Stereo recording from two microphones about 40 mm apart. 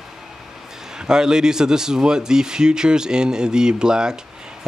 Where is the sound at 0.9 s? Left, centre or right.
Centre.